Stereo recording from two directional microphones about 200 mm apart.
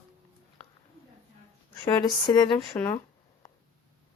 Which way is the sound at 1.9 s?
20° left (ahead or behind).